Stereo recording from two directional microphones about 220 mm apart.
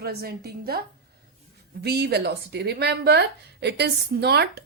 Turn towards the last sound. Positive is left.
turn(degrees=-50)  # may be behind; listen again after turning